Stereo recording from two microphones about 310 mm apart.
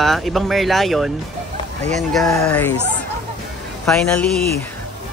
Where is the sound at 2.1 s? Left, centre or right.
Centre.